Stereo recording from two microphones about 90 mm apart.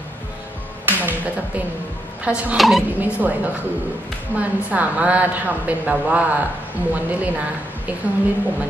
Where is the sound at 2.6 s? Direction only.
Centre (ahead or behind).